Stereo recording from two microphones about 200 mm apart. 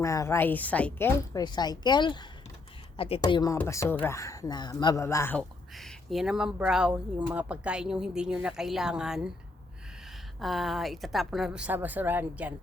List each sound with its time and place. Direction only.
0.0 s a woman's voice: 15° left (ahead or behind); by 9.3 s 5° right (ahead or behind)
10.4 s speech: centre (ahead or behind)